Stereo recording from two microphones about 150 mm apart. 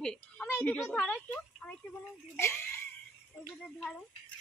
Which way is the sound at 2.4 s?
15° left (ahead or behind).